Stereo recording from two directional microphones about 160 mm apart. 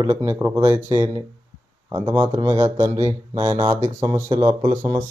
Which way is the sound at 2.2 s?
30° right (ahead or behind).